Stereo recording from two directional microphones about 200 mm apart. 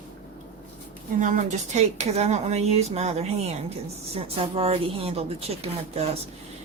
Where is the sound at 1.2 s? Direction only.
40° right (ahead or behind).